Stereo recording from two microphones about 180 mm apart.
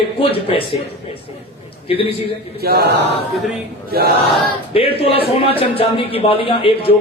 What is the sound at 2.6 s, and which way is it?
Chant, 60° right (ahead or behind).